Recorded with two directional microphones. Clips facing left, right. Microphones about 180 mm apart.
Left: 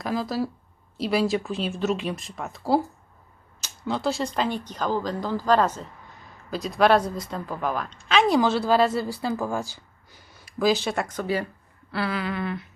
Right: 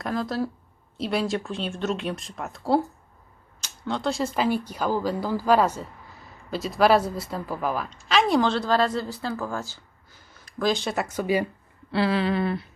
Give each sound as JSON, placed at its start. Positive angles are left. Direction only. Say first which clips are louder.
{"t": 0.0, "sound": "a woman's voice", "louder": "even", "side_deg": 5}
{"t": 3.8, "sound": "a woman's voice", "louder": "even", "side_deg": 5}
{"t": 11.9, "sound": "a sound", "louder": "right 5 dB", "side_deg": -25}